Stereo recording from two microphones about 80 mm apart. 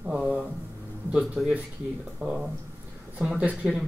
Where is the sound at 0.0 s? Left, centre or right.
Centre.